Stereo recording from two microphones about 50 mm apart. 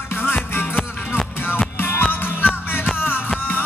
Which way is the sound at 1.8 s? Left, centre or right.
Left.